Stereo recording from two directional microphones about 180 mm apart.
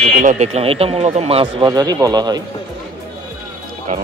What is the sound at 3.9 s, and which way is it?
Speech, 45° right (ahead or behind).